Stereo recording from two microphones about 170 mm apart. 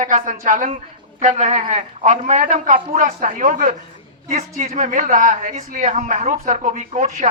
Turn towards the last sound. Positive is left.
turn(degrees=-45)  # may be behind; listen again after turning